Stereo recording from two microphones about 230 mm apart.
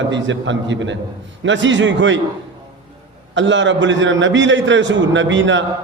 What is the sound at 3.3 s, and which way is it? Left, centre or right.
A man's voice, right.